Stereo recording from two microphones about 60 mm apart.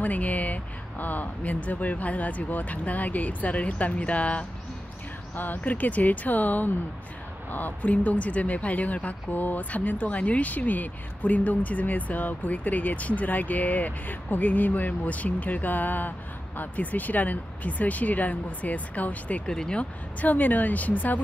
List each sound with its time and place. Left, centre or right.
0.0 s speech: left
19.4 s speech: centre; by 21.2 s left